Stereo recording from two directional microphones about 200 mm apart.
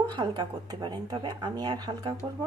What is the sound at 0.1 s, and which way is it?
A woman's voice, 25° right (ahead or behind).